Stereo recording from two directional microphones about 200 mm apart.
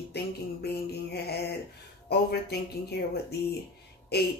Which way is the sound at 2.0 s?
55° left (ahead or behind).